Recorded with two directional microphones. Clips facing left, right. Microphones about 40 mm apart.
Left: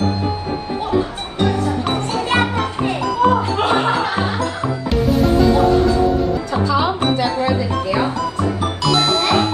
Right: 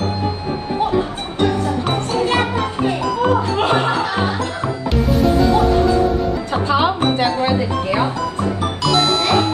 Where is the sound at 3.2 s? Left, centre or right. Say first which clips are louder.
Left 2 dB; centre.